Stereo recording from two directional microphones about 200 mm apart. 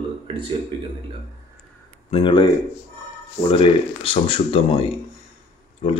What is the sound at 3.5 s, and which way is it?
Speech, 30° left (ahead or behind).